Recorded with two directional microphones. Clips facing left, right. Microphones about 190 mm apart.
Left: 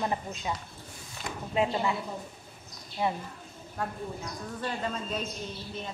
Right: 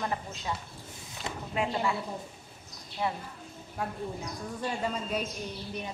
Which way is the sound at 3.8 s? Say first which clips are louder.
Even; 10° right (ahead or behind).